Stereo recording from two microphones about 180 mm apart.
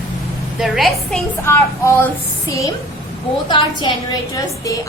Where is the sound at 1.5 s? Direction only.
15° left (ahead or behind).